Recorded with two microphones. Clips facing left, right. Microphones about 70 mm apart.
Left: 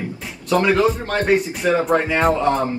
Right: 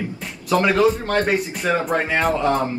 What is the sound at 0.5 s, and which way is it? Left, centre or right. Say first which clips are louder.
Speech: even; centre.